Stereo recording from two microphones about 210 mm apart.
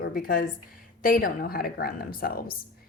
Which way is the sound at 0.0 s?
45° left (ahead or behind).